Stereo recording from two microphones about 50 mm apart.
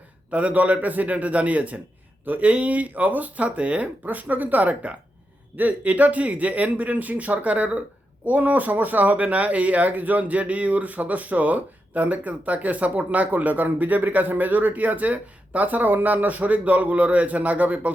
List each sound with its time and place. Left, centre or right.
0.3 s speech: right